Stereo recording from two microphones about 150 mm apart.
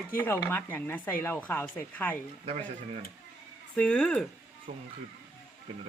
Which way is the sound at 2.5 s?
40° right (ahead or behind).